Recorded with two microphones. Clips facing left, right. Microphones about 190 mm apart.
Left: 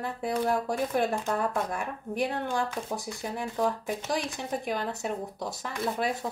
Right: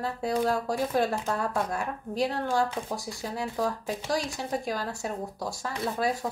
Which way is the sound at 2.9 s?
20° left (ahead or behind).